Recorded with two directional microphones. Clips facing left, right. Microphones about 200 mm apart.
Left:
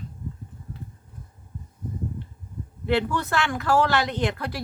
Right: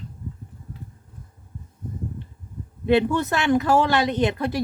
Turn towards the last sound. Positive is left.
turn(degrees=-20)  # may be behind; listen again after turning